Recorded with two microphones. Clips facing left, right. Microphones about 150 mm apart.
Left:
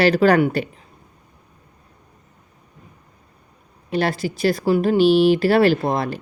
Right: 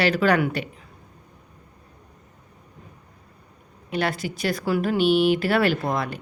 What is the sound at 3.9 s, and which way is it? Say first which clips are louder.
Speech: left 4 dB; 35° left (ahead or behind).